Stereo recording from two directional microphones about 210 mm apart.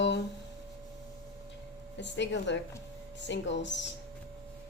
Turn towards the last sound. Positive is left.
turn(degrees=55)  # may be behind; listen again after turning